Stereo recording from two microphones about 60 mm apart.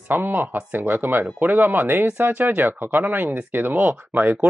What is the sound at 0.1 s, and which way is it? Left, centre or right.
Speech, right.